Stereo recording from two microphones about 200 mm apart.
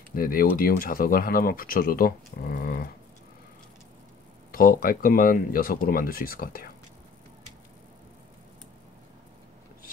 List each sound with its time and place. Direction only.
0.1 s speech: 45° left (ahead or behind)
4.5 s speech: 45° left (ahead or behind)